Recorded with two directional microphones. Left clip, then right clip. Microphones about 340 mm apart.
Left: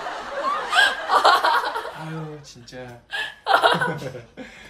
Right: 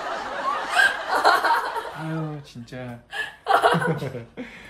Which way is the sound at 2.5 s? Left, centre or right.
Centre.